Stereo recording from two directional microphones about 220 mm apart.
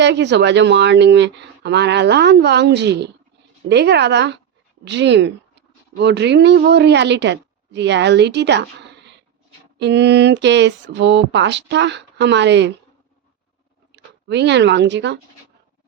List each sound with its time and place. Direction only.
0.0 s a woman's voice: 50° right (ahead or behind)
13.9 s speech: 50° right (ahead or behind)